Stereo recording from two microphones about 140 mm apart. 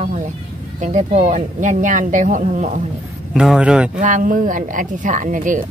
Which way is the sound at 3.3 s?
5° right (ahead or behind).